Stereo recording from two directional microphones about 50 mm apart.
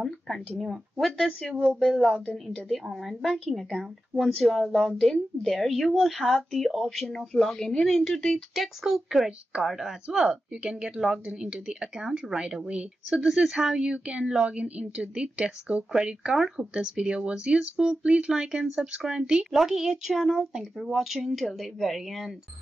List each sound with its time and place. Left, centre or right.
0.0 s speech: centre
8.5 s speech: centre
10.1 s a woman's voice: right
16.9 s a woman's voice: centre
19.5 s speech: centre